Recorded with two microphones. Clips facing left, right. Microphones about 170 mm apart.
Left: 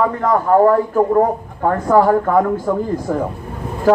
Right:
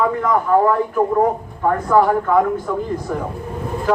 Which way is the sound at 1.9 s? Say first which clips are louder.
Left 3 dB; 45° left (ahead or behind).